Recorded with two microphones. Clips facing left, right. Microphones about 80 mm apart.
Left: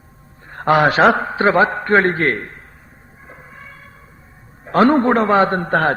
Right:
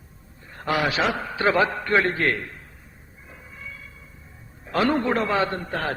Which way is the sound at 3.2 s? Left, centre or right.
Left.